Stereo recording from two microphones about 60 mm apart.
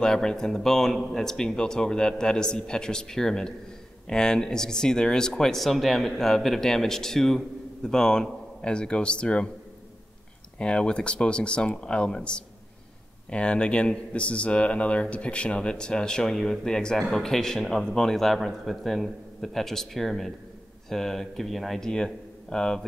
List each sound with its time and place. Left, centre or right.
0.0 s speech: centre
10.6 s speech: centre